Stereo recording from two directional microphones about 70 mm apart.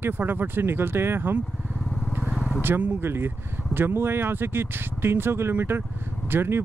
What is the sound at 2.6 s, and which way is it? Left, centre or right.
Speech, right.